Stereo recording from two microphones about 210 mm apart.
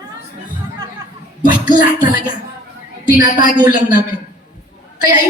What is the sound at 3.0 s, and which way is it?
Speech, 40° left (ahead or behind).